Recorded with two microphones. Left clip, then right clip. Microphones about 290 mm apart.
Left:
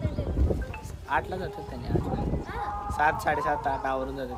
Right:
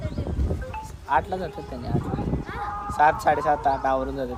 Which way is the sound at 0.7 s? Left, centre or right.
Centre.